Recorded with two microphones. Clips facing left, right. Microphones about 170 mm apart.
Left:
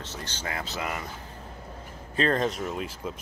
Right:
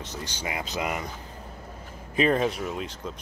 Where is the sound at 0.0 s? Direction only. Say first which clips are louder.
Right 2 dB; 15° right (ahead or behind).